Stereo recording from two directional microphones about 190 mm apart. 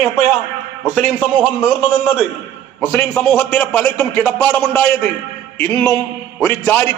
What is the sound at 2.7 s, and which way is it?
A man's voice, 5° left (ahead or behind).